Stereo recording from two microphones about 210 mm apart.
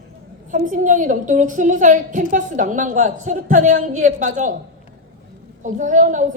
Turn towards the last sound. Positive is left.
turn(degrees=-35)  # may be behind; listen again after turning